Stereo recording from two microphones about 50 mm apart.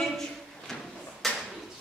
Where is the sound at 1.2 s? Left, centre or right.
Centre.